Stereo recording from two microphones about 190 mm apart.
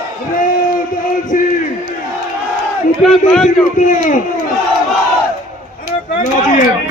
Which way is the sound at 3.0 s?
Centre (ahead or behind).